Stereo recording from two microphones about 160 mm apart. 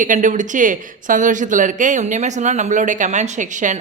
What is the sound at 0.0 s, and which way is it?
Speech, 55° right (ahead or behind).